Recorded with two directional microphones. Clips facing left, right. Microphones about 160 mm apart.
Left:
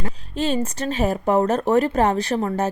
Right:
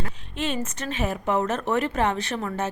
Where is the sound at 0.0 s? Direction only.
35° left (ahead or behind).